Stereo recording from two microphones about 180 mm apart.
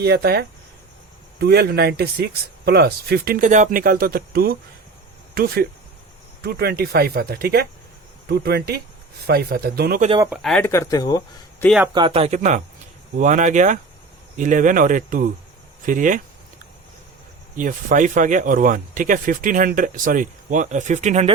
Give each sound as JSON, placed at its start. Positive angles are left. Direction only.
{"t": 0.0, "sound": "speech", "side_deg": -60}
{"t": 10.2, "sound": "speech", "side_deg": 0}
{"t": 10.7, "sound": "speech", "side_deg": 15}
{"t": 11.9, "sound": "speech", "side_deg": -30}
{"t": 17.6, "sound": "speech", "side_deg": -45}